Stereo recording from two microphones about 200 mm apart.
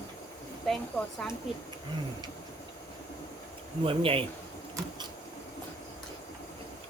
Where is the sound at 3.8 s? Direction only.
25° right (ahead or behind).